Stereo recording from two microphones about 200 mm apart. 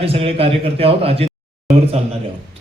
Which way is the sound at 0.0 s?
30° right (ahead or behind).